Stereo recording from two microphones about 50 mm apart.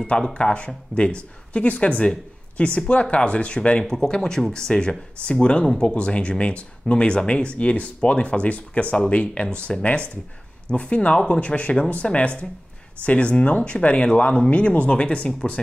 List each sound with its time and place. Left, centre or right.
0.3 s speech: left